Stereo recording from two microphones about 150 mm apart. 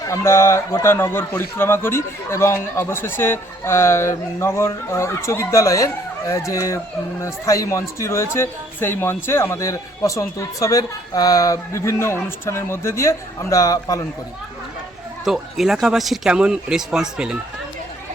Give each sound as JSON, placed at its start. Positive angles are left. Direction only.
{"t": 0.0, "sound": "speech", "side_deg": 20}
{"t": 15.2, "sound": "speech", "side_deg": 0}